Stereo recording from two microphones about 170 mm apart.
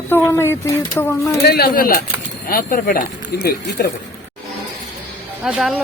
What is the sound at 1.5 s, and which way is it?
Speech, 65° left (ahead or behind).